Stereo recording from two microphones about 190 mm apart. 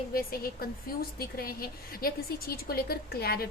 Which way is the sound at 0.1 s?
50° left (ahead or behind).